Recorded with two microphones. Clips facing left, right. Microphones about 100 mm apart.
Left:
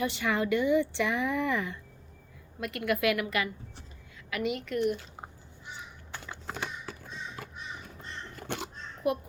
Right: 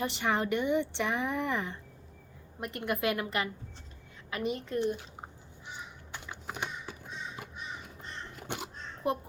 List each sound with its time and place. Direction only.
0.0 s speech: 25° right (ahead or behind)
6.1 s crow: 15° right (ahead or behind)
9.0 s a child's voice: 30° right (ahead or behind)